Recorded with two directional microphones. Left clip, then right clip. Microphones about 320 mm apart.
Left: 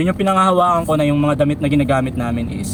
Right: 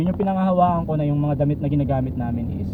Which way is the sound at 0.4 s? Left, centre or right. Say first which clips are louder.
Left 2 dB; left.